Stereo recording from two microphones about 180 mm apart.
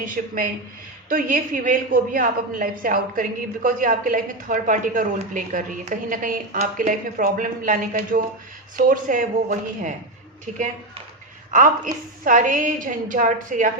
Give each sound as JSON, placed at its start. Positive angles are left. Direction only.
{"t": 0.2, "sound": "a woman's voice", "side_deg": -45}
{"t": 11.5, "sound": "a woman's voice", "side_deg": -45}